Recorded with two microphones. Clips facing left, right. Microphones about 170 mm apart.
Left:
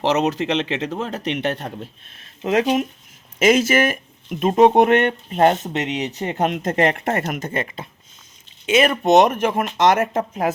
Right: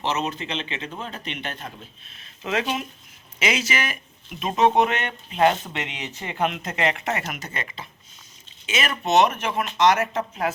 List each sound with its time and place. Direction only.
0.0 s speech: 90° left
2.4 s speech: 40° left (ahead or behind)